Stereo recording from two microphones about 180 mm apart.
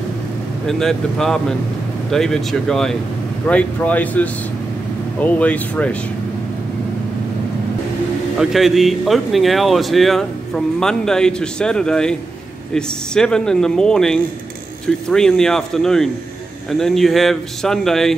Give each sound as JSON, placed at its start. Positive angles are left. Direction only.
{"t": 0.7, "sound": "speech", "side_deg": 5}
{"t": 8.4, "sound": "speech", "side_deg": 0}